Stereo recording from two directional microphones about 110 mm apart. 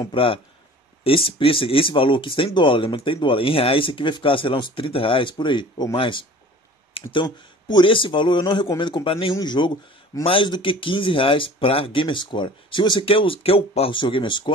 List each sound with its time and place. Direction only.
0.1 s speech: 55° left (ahead or behind)
9.3 s speech: 40° left (ahead or behind)